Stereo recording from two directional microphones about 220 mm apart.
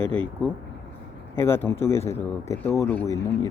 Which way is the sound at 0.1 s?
5° left (ahead or behind).